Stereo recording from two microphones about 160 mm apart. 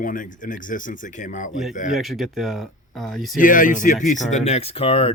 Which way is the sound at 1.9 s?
Centre (ahead or behind).